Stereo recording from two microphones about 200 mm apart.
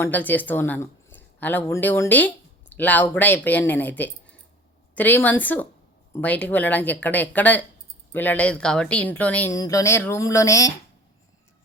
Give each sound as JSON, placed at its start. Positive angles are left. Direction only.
{"t": 0.0, "sound": "speech", "side_deg": 10}